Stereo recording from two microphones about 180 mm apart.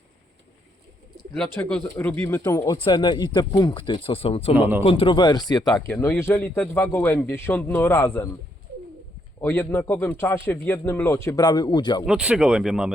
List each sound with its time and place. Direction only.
1.5 s a man's voice: 5° left (ahead or behind)
9.4 s a man's voice: 10° left (ahead or behind)
12.0 s speech: 5° right (ahead or behind)